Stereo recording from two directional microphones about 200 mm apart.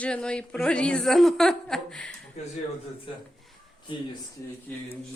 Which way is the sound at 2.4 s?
35° left (ahead or behind).